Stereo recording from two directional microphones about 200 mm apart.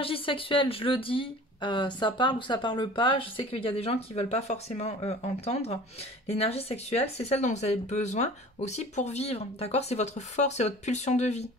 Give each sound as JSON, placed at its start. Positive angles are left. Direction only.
{"t": 0.0, "sound": "speech", "side_deg": 25}